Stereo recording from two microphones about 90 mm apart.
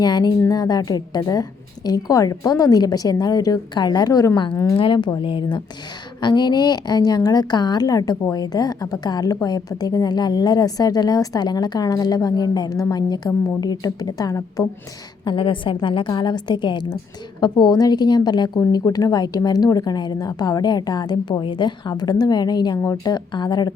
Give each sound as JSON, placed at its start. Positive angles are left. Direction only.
{"t": 0.0, "sound": "a woman's voice", "side_deg": 50}
{"t": 4.8, "sound": "a woman's voice", "side_deg": 65}
{"t": 15.2, "sound": "a woman's voice", "side_deg": 65}
{"t": 16.0, "sound": "a woman's voice", "side_deg": 55}
{"t": 17.4, "sound": "a woman's voice", "side_deg": 45}
{"t": 18.9, "sound": "a woman's voice", "side_deg": 40}
{"t": 21.4, "sound": "a woman's voice", "side_deg": 60}